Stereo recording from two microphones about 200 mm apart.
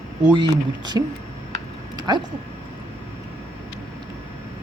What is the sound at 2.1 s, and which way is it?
Speech, 20° right (ahead or behind).